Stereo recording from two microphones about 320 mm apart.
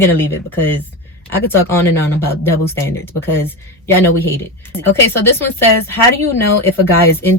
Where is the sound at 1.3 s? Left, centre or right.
Centre.